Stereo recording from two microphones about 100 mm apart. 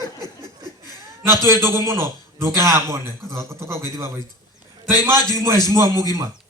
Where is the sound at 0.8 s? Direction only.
25° right (ahead or behind).